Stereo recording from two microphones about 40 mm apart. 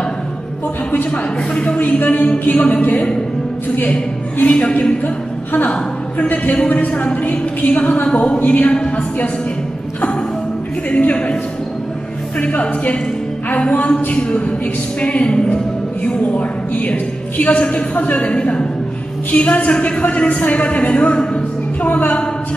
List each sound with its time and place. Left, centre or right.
1.1 s speech: left
1.8 s speech: left
2.6 s speech: left
4.4 s speech: left
5.0 s a woman's voice: left
6.9 s speech: left
10.9 s speech: left
12.4 s speech: left
15.3 s speech: left
16.0 s speech: left
21.8 s speech: left